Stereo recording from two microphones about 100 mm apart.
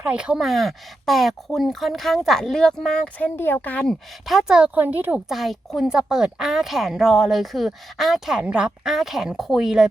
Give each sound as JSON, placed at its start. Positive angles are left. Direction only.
{"t": 0.0, "sound": "a woman's voice", "side_deg": -10}
{"t": 3.3, "sound": "speech", "side_deg": 20}
{"t": 3.8, "sound": "speech", "side_deg": 0}
{"t": 5.3, "sound": "a woman's voice", "side_deg": 0}